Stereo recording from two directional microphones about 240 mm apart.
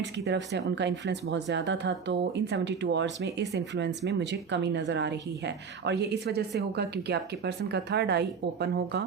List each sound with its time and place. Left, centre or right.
0.0 s a woman's voice: right